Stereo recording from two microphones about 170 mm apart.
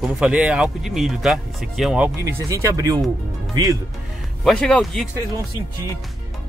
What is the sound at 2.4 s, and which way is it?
Speech, 20° right (ahead or behind).